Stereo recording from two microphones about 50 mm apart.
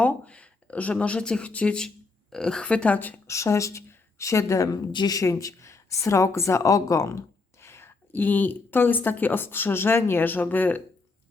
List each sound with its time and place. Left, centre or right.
0.0 s speech: left
3.2 s a woman's voice: left
7.6 s whispering: left
8.2 s speech: left